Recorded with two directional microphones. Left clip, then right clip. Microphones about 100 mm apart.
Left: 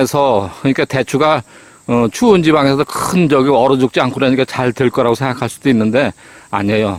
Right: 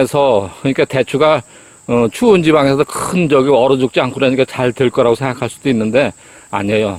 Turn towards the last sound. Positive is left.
turn(degrees=45)  # may be behind; listen again after turning